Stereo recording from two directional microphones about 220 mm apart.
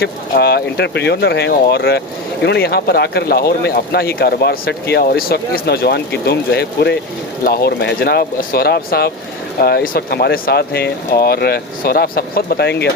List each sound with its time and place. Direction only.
0.0 s speech: 45° left (ahead or behind)